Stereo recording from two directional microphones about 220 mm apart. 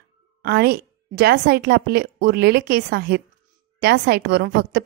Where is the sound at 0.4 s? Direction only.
45° right (ahead or behind).